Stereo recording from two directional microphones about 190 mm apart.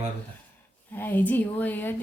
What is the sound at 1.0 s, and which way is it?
Speech, 10° left (ahead or behind).